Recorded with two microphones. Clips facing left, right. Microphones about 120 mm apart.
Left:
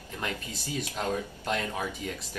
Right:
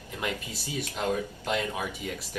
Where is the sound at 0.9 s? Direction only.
10° right (ahead or behind).